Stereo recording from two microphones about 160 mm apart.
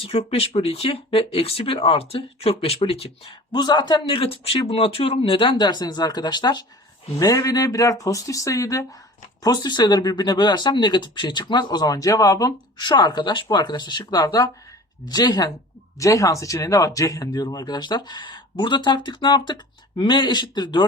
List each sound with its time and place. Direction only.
0.0 s speech: 40° left (ahead or behind)